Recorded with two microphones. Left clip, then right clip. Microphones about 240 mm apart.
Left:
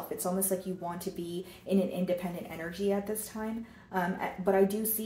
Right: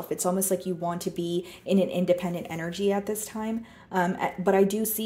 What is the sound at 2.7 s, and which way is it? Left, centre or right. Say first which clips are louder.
Speech: right 5 dB; right.